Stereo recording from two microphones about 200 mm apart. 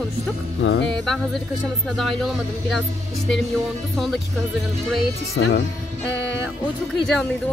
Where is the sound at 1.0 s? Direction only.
Centre (ahead or behind).